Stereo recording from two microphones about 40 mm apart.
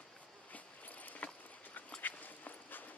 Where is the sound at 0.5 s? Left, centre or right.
Left.